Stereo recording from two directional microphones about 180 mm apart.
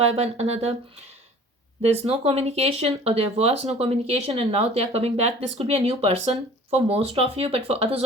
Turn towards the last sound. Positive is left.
turn(degrees=-35)  # may be behind; listen again after turning